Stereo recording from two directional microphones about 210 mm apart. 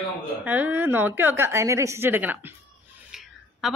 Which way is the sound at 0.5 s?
10° right (ahead or behind).